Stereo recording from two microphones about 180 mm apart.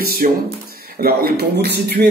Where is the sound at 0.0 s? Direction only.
55° right (ahead or behind).